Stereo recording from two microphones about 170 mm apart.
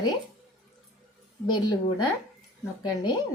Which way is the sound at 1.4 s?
25° left (ahead or behind).